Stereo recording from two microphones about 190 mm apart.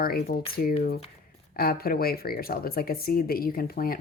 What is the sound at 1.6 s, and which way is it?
Speech, 55° left (ahead or behind).